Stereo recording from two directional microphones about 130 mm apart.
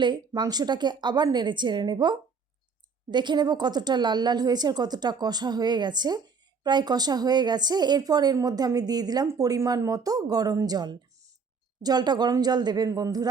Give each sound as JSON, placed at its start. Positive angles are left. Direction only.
{"t": 0.0, "sound": "a woman's voice", "side_deg": -35}